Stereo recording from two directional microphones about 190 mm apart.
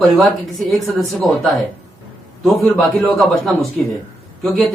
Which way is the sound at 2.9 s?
Centre (ahead or behind).